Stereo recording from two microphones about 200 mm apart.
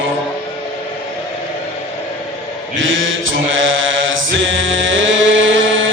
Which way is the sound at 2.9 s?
75° right (ahead or behind).